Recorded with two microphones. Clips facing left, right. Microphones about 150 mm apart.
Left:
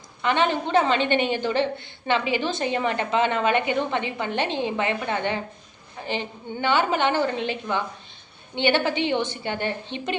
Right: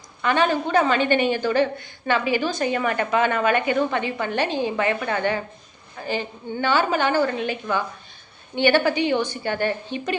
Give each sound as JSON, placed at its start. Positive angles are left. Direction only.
{"t": 0.2, "sound": "a woman's voice", "side_deg": 20}